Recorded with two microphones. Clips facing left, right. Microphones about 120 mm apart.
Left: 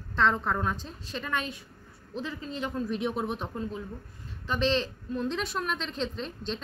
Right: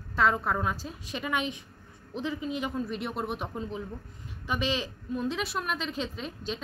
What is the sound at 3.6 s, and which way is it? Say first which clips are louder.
Speech: even; 15° right (ahead or behind).